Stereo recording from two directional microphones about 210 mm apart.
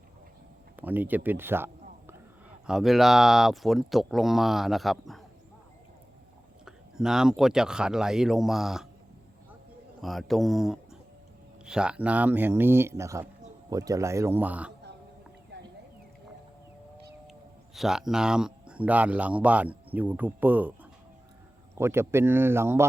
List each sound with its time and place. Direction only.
0.8 s speech: 10° right (ahead or behind)
6.7 s speech: 5° right (ahead or behind)
10.0 s speech: centre (ahead or behind)
15.5 s a sound: 50° right (ahead or behind)
17.7 s speech: centre (ahead or behind)
21.8 s speech: 10° right (ahead or behind)